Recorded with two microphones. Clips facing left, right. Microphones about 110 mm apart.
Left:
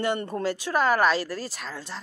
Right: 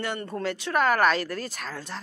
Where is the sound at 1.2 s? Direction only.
30° left (ahead or behind).